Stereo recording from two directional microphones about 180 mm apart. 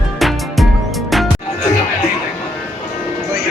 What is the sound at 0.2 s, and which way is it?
Music, centre (ahead or behind).